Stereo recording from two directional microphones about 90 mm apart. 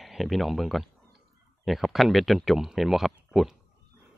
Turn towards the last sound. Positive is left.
turn(degrees=0)  # may be behind; listen again after turning